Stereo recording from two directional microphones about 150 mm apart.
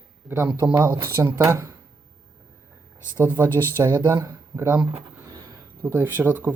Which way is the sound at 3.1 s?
15° right (ahead or behind).